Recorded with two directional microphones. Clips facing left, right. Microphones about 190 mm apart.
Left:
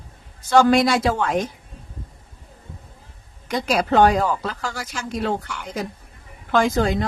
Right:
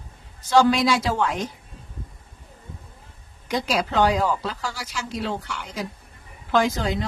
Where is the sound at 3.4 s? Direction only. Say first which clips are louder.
Left 3 dB; 50° left (ahead or behind).